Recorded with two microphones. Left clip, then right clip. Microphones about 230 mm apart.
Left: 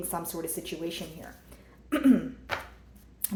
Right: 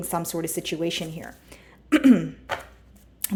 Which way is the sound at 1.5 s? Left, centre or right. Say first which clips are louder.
Right 10 dB; right.